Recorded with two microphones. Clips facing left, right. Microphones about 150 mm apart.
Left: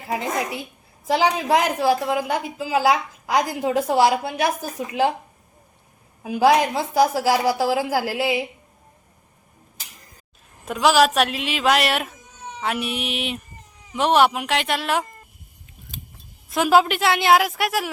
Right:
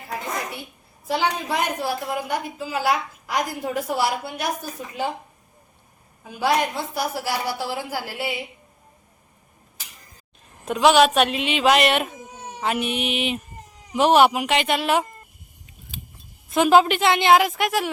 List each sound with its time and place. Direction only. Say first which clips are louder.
0.1 s a woman's voice: left 5 dB; 90° left
6.2 s a woman's voice: left 5 dB; 90° left
10.7 s a woman's voice: right 1 dB; centre (ahead or behind)
16.5 s a woman's voice: right 1 dB; 5° left (ahead or behind)